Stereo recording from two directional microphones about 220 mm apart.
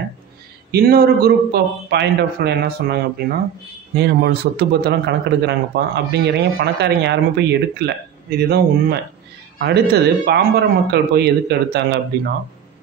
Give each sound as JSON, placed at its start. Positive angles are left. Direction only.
{"t": 0.7, "sound": "a man's voice", "side_deg": -45}